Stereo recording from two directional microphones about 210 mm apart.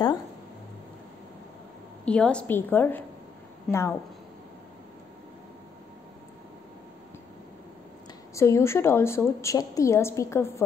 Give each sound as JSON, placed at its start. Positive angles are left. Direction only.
{"t": 2.0, "sound": "a woman's voice", "side_deg": 5}
{"t": 8.4, "sound": "a woman's voice", "side_deg": 15}